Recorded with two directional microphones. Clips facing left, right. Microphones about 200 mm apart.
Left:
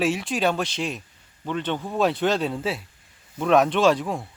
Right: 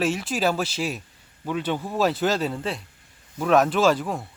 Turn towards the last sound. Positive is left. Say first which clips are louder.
# left 1 dB
turn(degrees=0)  # may be behind; listen again after turning